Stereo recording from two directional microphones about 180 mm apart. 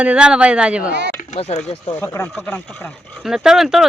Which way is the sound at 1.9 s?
15° left (ahead or behind).